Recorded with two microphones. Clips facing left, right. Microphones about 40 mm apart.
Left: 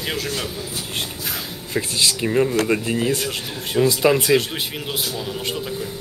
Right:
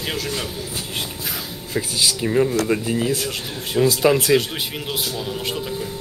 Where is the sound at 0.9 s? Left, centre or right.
Centre.